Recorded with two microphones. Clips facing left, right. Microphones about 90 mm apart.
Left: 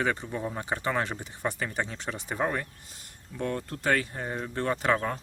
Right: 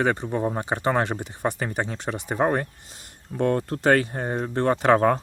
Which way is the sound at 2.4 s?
45° right (ahead or behind).